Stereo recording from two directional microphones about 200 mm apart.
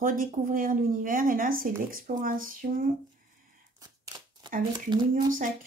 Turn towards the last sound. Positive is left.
turn(degrees=-20)  # may be behind; listen again after turning